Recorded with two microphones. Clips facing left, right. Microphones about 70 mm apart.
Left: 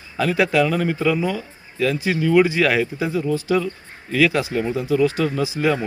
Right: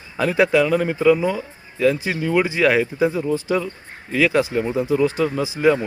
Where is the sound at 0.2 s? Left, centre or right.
Right.